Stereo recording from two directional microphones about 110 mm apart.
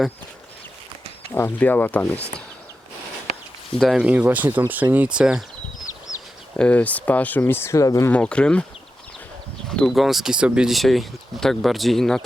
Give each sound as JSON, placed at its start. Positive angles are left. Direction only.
{"t": 1.3, "sound": "speech", "side_deg": 20}
{"t": 3.8, "sound": "speech", "side_deg": 0}
{"t": 4.0, "sound": "speech", "side_deg": -15}
{"t": 6.6, "sound": "speech", "side_deg": 15}
{"t": 8.1, "sound": "speech", "side_deg": 10}
{"t": 9.6, "sound": "speech", "side_deg": 5}